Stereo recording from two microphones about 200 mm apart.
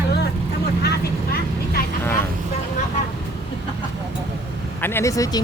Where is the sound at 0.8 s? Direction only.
50° left (ahead or behind).